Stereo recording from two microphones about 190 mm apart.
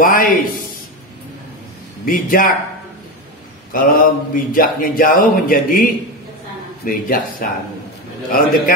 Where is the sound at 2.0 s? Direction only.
45° left (ahead or behind).